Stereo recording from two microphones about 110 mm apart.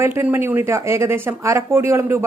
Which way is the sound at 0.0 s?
20° right (ahead or behind).